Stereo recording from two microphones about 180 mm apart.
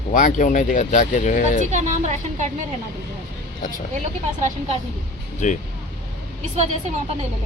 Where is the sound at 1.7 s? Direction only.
40° right (ahead or behind).